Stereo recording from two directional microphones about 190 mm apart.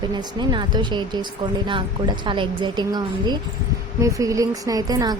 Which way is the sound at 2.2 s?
25° right (ahead or behind).